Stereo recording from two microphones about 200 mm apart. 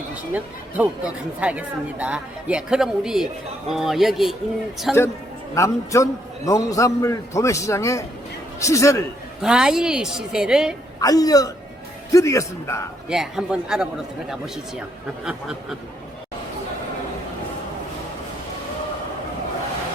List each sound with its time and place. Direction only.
0.1 s speech: 5° right (ahead or behind)
5.5 s a man's voice: 15° left (ahead or behind)
9.4 s speech: 5° right (ahead or behind)
11.0 s a man's voice: 20° left (ahead or behind)
13.1 s speech: 5° right (ahead or behind)